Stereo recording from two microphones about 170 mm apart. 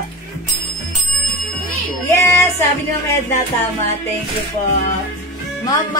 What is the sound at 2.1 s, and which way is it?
Music, 15° left (ahead or behind).